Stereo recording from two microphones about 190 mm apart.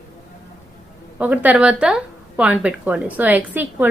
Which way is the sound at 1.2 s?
5° right (ahead or behind).